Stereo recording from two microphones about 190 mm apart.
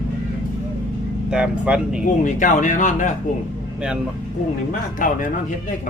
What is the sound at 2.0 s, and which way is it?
Speech, 40° left (ahead or behind).